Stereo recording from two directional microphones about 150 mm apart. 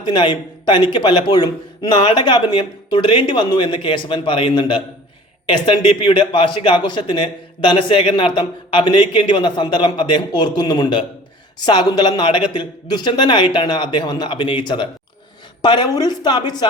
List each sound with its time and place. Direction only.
0.0 s a man's voice: 30° left (ahead or behind)